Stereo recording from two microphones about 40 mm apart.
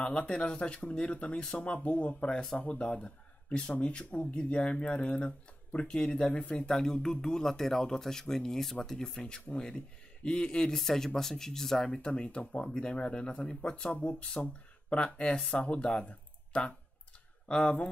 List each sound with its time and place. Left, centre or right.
0.0 s a man's voice: left
6.7 s speech: centre
11.9 s speech: left
14.9 s speech: left